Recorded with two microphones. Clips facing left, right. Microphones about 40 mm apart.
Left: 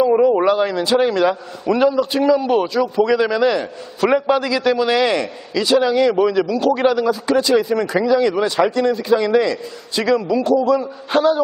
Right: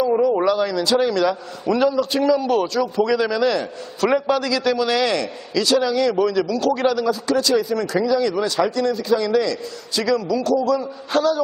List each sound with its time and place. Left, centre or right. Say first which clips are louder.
0.0 s speech: left 4 dB; left
1.6 s a man's voice: left 3 dB; centre